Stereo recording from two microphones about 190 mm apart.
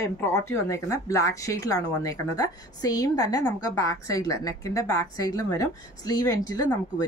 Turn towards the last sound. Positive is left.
turn(degrees=20)  # may be behind; listen again after turning